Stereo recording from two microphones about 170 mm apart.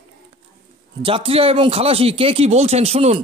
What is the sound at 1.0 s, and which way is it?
Speech, 30° right (ahead or behind).